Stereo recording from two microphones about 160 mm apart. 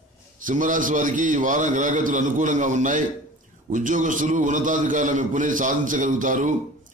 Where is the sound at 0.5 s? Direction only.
55° right (ahead or behind).